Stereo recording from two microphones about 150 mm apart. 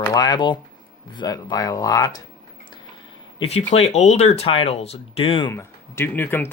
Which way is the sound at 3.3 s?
40° left (ahead or behind).